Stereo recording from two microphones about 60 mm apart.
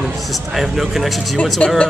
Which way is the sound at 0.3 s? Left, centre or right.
Centre.